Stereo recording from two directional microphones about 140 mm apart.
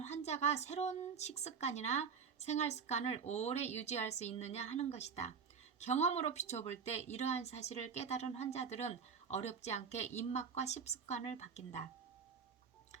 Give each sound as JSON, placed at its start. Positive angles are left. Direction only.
{"t": 0.0, "sound": "a woman's voice", "side_deg": 55}